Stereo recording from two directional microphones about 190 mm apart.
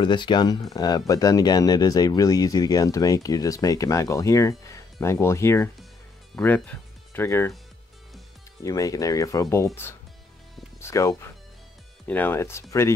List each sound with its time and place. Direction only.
0.0 s speech: 25° left (ahead or behind)
8.6 s speech: 15° left (ahead or behind)
10.8 s speech: 15° left (ahead or behind)